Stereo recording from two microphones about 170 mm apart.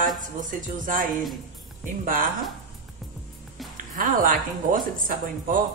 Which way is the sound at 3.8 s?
50° right (ahead or behind).